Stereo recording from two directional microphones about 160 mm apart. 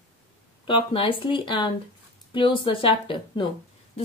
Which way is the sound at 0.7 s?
30° left (ahead or behind).